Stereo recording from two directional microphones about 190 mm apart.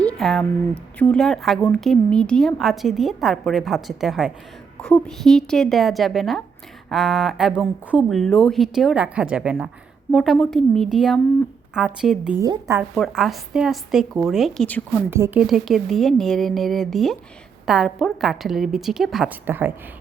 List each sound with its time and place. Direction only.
0.0 s a sound: 5° left (ahead or behind)
0.9 s speech: 5° left (ahead or behind)
12.4 s a woman's voice: 15° right (ahead or behind)
12.9 s speech: centre (ahead or behind)
15.1 s speech: 10° right (ahead or behind)